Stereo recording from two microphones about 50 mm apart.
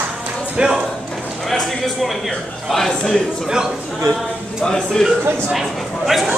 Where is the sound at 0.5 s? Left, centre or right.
Centre.